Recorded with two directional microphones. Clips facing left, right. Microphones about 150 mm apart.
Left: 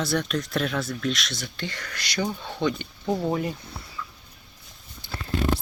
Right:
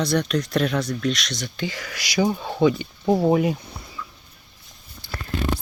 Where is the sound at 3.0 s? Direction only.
30° right (ahead or behind).